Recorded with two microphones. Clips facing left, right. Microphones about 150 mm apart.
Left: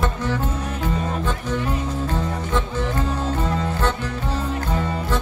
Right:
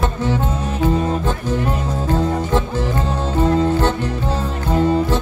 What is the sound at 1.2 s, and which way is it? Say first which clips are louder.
Music: right 4 dB; 30° right (ahead or behind).